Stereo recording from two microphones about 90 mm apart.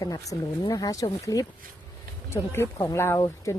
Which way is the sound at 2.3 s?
30° left (ahead or behind).